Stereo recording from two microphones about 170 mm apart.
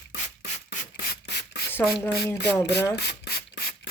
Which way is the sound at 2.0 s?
15° left (ahead or behind).